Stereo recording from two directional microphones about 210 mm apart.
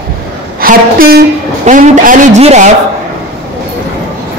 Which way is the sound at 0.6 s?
45° right (ahead or behind).